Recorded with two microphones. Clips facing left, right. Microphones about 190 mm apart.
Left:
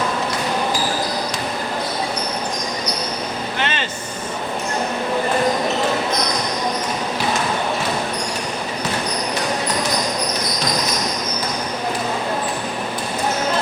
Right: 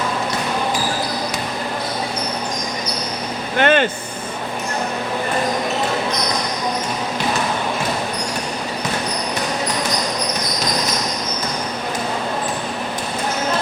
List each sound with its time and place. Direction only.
3.6 s music: 55° right (ahead or behind)